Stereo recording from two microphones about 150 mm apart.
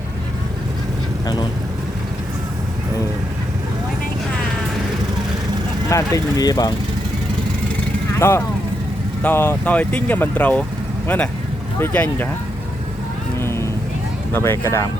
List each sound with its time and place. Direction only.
5.9 s speech: 20° left (ahead or behind)
8.2 s speech: 15° left (ahead or behind)
11.8 s speech: 10° left (ahead or behind)
13.4 s vehicle: 15° left (ahead or behind)
14.3 s speech: 15° left (ahead or behind)